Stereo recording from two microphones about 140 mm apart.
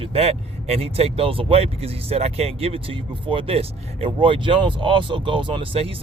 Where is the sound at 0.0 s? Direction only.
45° right (ahead or behind).